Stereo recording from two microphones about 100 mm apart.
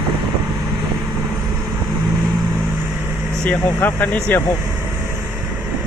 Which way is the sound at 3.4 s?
15° left (ahead or behind).